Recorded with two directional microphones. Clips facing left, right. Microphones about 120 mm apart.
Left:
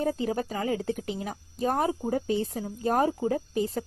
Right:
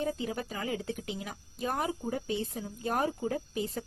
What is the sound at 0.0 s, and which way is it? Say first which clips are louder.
A woman's voice: left 6 dB; 40° left (ahead or behind).